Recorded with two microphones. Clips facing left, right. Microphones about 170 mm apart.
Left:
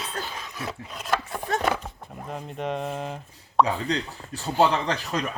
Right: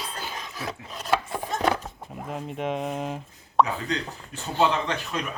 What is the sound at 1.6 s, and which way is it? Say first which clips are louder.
Horse: right 2 dB; 5° left (ahead or behind).